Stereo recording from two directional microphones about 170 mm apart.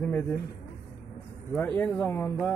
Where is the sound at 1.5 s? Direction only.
10° left (ahead or behind).